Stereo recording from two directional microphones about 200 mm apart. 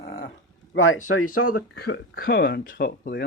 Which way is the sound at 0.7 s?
90° left.